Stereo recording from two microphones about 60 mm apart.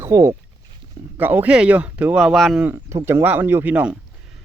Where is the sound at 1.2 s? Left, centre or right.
Right.